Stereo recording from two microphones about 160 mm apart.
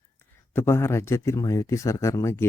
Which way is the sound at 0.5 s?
15° left (ahead or behind).